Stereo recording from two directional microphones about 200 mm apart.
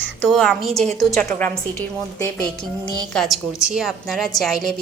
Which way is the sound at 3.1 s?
Centre (ahead or behind).